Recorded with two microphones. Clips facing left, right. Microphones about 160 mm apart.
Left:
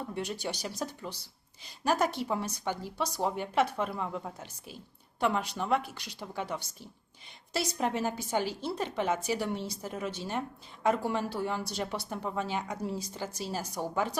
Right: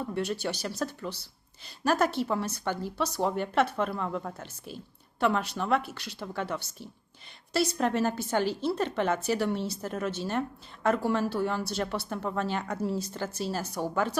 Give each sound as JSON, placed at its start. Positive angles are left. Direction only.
{"t": 0.2, "sound": "a woman's voice", "side_deg": 15}